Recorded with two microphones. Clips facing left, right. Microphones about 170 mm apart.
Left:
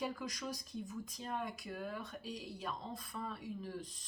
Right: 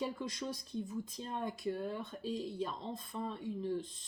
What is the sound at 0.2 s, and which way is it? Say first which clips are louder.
Speech: right 3 dB; 25° right (ahead or behind).